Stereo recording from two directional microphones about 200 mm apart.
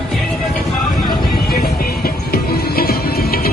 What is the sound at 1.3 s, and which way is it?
Music, 50° left (ahead or behind).